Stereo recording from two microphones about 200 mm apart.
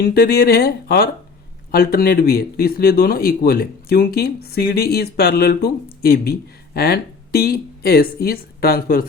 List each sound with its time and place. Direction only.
0.0 s speech: 50° left (ahead or behind)